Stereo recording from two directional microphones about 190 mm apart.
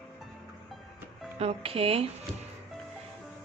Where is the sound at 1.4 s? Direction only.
30° right (ahead or behind).